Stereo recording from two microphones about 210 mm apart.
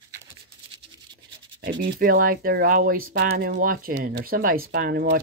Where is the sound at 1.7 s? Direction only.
50° right (ahead or behind).